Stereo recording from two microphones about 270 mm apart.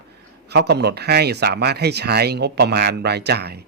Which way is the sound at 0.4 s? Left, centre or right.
Right.